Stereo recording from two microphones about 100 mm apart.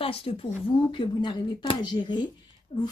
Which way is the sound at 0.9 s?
50° left (ahead or behind).